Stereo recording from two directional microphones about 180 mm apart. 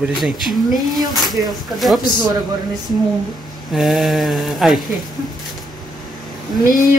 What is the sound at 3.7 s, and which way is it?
Speech, centre (ahead or behind).